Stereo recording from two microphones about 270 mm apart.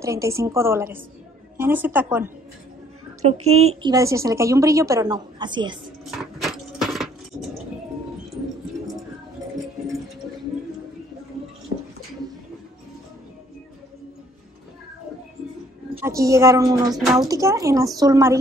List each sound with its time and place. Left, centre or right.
0.0 s a woman's voice: centre
3.4 s a woman's voice: right
3.9 s a woman's voice: centre
6.0 s a sound: centre
16.0 s a woman's voice: centre
16.9 s speech: centre
17.3 s a woman's voice: centre